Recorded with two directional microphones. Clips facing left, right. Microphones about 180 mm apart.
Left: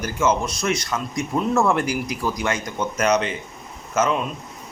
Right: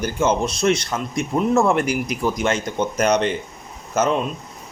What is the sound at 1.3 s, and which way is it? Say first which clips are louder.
Speech: right 2 dB; 20° right (ahead or behind).